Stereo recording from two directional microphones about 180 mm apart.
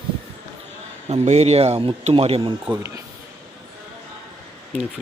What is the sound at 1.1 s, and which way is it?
Speech, 35° right (ahead or behind).